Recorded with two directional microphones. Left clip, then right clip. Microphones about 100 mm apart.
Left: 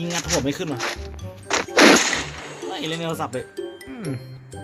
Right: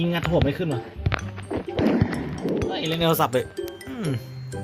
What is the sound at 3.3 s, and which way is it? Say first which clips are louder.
Music: right 4 dB; centre (ahead or behind).